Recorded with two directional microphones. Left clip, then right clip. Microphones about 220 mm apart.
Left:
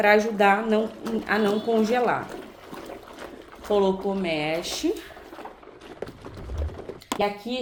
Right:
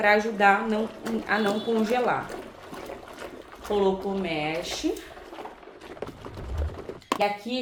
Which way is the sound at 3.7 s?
50° left (ahead or behind).